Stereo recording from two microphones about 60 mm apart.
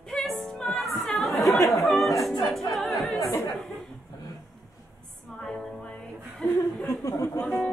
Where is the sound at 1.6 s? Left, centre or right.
Left.